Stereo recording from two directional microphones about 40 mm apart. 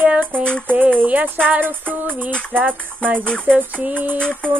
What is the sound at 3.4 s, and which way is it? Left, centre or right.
Music, right.